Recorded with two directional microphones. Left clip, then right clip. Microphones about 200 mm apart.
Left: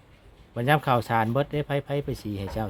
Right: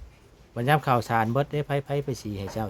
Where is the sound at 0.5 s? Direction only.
Centre (ahead or behind).